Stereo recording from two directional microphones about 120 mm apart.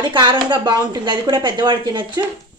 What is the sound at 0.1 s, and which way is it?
A woman's voice, 40° right (ahead or behind).